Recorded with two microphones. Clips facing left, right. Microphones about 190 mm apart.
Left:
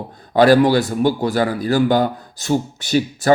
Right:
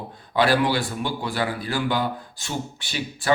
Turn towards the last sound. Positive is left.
turn(degrees=40)  # may be behind; listen again after turning